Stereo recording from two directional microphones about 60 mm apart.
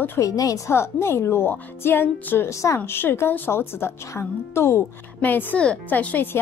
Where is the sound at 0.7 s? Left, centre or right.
Left.